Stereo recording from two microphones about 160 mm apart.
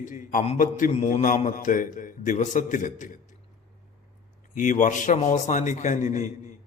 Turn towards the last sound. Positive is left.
turn(degrees=50)  # may be behind; listen again after turning